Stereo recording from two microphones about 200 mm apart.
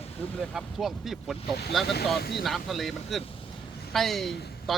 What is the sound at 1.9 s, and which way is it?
Speech, 50° left (ahead or behind).